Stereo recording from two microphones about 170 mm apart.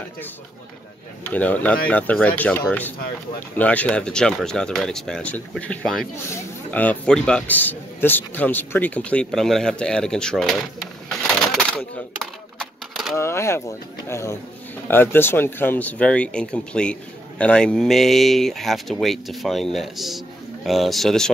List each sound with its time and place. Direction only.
1.2 s speech: 10° left (ahead or behind)
12.2 s typewriter: centre (ahead or behind)
13.1 s speech: 15° left (ahead or behind)